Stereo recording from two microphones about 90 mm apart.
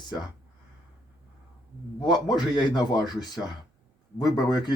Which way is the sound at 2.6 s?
50° left (ahead or behind).